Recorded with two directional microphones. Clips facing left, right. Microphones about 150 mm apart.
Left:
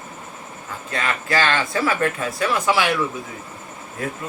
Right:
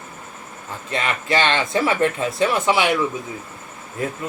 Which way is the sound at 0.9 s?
20° right (ahead or behind).